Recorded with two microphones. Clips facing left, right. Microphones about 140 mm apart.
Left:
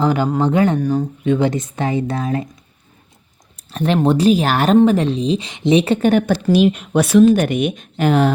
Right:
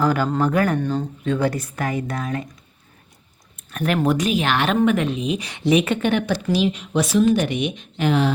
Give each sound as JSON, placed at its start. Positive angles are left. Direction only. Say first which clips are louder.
{"t": 0.0, "sound": "speech", "louder": "left 3 dB", "side_deg": 20}
{"t": 0.8, "sound": "speech", "louder": "left 5 dB", "side_deg": 10}
{"t": 3.7, "sound": "speech", "louder": "left 4 dB", "side_deg": 25}